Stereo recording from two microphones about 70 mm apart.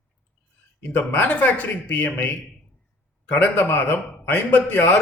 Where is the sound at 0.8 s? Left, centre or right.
Left.